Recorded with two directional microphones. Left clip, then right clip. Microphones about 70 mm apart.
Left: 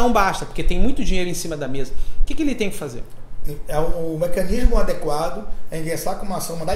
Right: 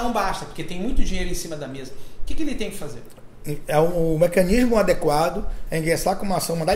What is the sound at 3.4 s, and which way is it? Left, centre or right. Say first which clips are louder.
Speech: right 4 dB; right.